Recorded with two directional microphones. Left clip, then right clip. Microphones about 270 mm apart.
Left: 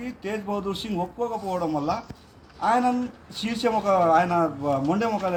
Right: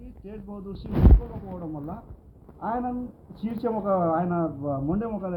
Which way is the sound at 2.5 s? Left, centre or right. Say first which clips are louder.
Left 8 dB; left.